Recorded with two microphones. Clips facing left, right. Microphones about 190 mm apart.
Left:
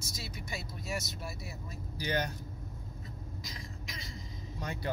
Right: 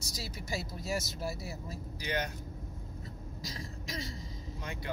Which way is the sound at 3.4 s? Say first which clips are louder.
Right 4 dB; 40° right (ahead or behind).